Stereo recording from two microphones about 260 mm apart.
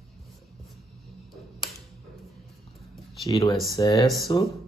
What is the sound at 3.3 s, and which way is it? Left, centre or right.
Speech, centre.